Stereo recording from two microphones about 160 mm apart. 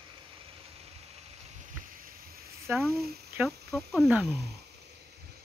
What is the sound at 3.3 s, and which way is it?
Speech, centre (ahead or behind).